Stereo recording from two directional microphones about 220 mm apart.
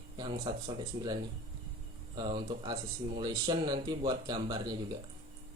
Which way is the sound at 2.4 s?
20° right (ahead or behind).